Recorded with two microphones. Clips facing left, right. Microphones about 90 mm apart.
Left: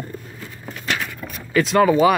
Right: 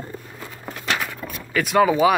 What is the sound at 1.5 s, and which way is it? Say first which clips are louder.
Speech: left 2 dB; 5° right (ahead or behind).